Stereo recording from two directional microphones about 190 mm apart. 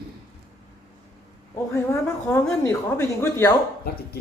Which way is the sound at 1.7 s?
15° left (ahead or behind).